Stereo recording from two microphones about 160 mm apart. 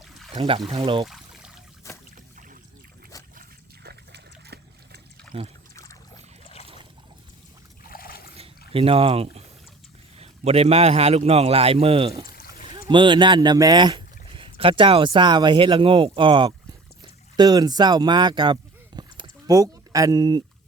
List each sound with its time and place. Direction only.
0.3 s speech: 35° right (ahead or behind)
1.0 s a sound: centre (ahead or behind)
1.8 s boat: 20° left (ahead or behind)
3.8 s water: 90° right
7.9 s a sound: 65° left (ahead or behind)
8.7 s speech: 35° right (ahead or behind)